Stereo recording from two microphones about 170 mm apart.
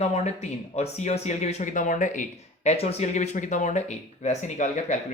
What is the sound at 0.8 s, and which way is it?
Speech, 40° left (ahead or behind).